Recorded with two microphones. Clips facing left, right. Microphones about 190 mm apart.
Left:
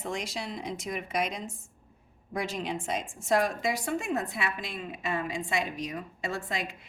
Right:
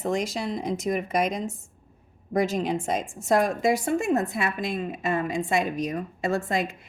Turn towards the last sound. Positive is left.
turn(degrees=-45)  # may be behind; listen again after turning